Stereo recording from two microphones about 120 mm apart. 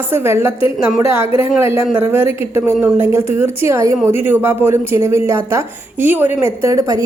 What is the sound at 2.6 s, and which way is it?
A woman's voice, 20° right (ahead or behind).